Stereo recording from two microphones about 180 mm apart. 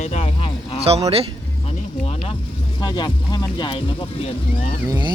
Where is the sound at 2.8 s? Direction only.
25° left (ahead or behind).